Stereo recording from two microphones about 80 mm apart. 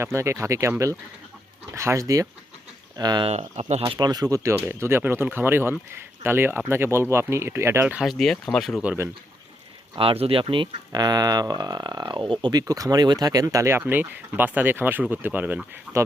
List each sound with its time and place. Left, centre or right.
0.0 s speech: right
1.7 s speech: right
3.0 s speech: right
4.4 s speech: right
8.0 s speech: centre
9.9 s speech: right
10.9 s speech: right
12.1 s speech: right
15.9 s a sound: centre